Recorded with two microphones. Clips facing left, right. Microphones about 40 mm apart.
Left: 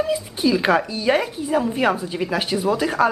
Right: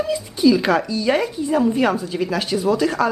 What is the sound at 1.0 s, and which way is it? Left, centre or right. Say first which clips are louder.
Speech: right 1 dB; centre.